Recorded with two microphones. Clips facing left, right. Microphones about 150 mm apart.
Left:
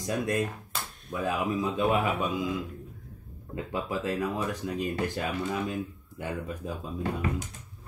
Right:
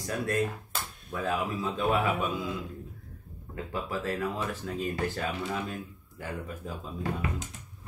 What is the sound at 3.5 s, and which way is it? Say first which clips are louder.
Speech: left 2 dB; 20° left (ahead or behind).